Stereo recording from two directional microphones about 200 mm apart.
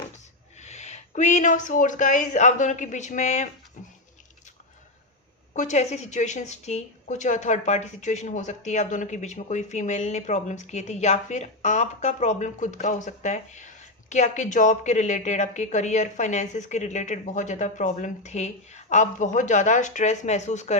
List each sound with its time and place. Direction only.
0.5 s speech: 35° left (ahead or behind)
3.8 s a sound: 40° left (ahead or behind)
5.5 s a woman's voice: 35° left (ahead or behind)